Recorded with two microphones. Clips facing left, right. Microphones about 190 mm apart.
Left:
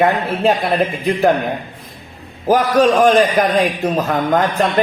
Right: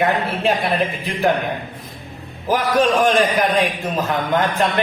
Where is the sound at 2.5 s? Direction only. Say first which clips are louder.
Left 4 dB; 45° left (ahead or behind).